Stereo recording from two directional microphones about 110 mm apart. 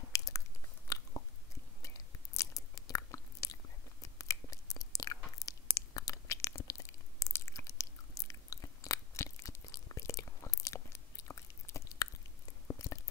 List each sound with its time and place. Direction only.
0.1 s biting: 30° left (ahead or behind)
1.8 s chewing: 30° left (ahead or behind)
4.0 s a sound: 30° left (ahead or behind)